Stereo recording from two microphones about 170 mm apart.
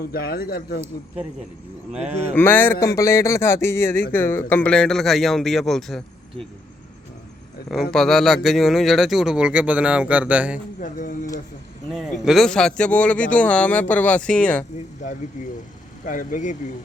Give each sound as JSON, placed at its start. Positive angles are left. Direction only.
{"t": 0.0, "sound": "speech", "side_deg": 60}
{"t": 1.9, "sound": "cattle", "side_deg": -5}
{"t": 2.3, "sound": "a man's voice", "side_deg": 10}
{"t": 7.7, "sound": "speech", "side_deg": 5}
{"t": 10.8, "sound": "speech", "side_deg": 50}
{"t": 11.9, "sound": "a man's voice", "side_deg": 0}
{"t": 16.0, "sound": "speech", "side_deg": 50}